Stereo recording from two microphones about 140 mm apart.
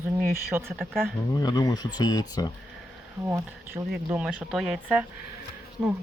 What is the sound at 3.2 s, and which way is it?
Speech, 20° right (ahead or behind).